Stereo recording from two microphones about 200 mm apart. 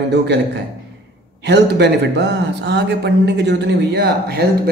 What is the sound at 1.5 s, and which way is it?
A man's voice, 60° right (ahead or behind).